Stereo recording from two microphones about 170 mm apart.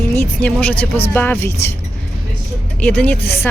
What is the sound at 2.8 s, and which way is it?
Speech, 10° left (ahead or behind).